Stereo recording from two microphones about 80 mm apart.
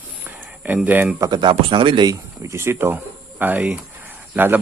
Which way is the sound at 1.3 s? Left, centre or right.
Right.